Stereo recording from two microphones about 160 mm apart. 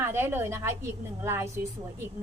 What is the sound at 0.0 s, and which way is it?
A woman's voice, 15° right (ahead or behind).